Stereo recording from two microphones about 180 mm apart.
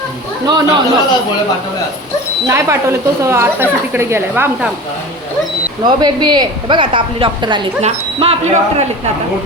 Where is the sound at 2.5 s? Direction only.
15° right (ahead or behind).